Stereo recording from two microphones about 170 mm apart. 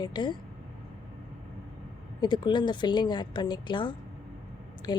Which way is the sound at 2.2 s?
25° left (ahead or behind).